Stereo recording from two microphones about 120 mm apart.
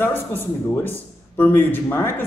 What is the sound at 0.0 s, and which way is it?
A man's voice, 20° left (ahead or behind).